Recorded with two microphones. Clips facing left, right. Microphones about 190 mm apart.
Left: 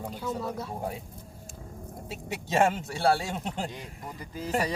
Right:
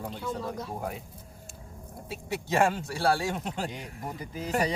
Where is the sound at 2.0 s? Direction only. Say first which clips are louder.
Right 3 dB; 25° left (ahead or behind).